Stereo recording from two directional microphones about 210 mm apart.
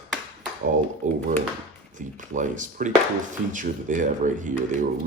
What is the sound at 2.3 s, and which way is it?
Speech, 35° right (ahead or behind).